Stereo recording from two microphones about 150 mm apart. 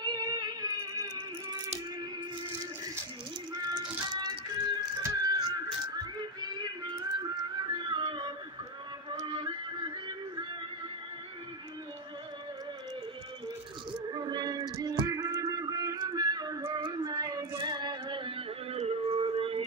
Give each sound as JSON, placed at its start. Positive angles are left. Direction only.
{"t": 0.0, "sound": "music", "side_deg": -25}
{"t": 3.7, "sound": "music", "side_deg": -30}
{"t": 14.1, "sound": "music", "side_deg": -30}
{"t": 14.8, "sound": "a sound", "side_deg": -25}
{"t": 16.6, "sound": "child singing", "side_deg": -30}